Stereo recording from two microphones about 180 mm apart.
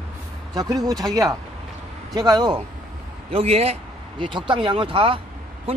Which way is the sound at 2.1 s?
20° right (ahead or behind).